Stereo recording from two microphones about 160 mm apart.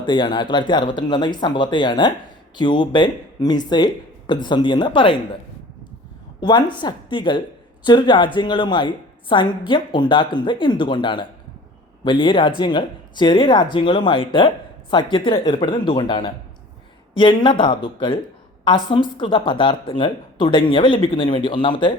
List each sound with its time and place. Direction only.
0.0 s speech: 30° left (ahead or behind)
6.4 s speech: 25° left (ahead or behind)